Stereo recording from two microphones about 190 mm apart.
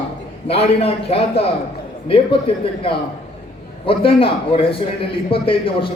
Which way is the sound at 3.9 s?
30° left (ahead or behind).